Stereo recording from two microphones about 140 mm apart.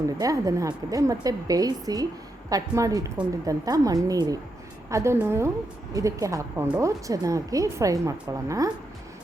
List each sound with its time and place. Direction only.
0.2 s a woman's voice: 25° right (ahead or behind)